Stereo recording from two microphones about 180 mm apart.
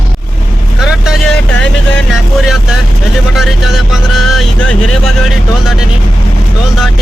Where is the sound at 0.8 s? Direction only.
Centre (ahead or behind).